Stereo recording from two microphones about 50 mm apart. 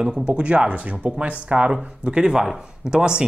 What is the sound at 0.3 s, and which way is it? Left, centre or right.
Speech, right.